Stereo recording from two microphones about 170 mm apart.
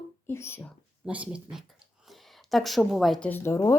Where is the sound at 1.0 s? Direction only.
5° right (ahead or behind).